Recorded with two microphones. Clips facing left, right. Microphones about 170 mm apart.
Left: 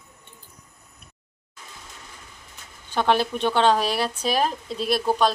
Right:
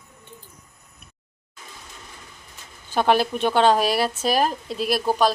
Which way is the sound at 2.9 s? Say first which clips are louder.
Right 2 dB; 5° right (ahead or behind).